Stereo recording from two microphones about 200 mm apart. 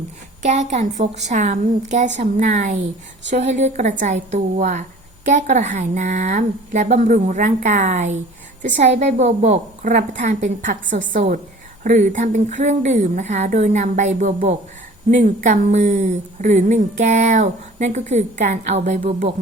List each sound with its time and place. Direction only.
0.7 s a woman's voice: 35° right (ahead or behind)
2.7 s speech: 65° right (ahead or behind)
3.3 s a woman's voice: 35° right (ahead or behind)